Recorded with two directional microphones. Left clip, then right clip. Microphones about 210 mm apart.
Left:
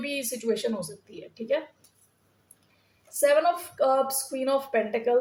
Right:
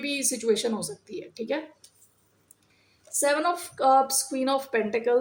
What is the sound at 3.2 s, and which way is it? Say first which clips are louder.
Speech: left 3 dB; 40° right (ahead or behind).